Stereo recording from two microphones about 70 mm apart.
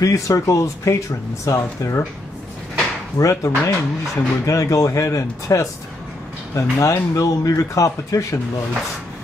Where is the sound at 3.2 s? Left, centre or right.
Left.